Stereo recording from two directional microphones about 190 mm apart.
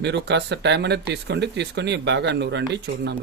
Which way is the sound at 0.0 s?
65° right (ahead or behind).